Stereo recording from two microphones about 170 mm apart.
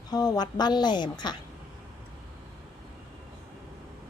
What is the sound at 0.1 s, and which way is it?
A woman's voice, 20° left (ahead or behind).